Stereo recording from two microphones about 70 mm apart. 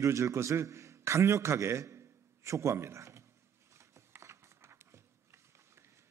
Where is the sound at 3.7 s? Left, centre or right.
Right.